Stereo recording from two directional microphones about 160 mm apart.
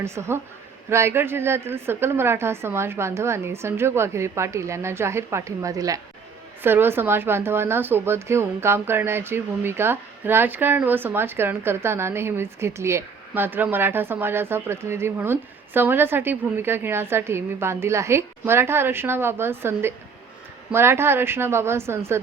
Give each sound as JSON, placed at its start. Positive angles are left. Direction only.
{"t": 0.0, "sound": "speech", "side_deg": -15}